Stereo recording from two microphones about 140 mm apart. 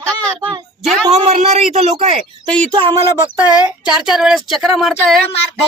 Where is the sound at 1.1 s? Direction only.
50° right (ahead or behind).